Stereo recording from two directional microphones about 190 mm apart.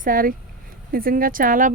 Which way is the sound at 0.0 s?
45° right (ahead or behind).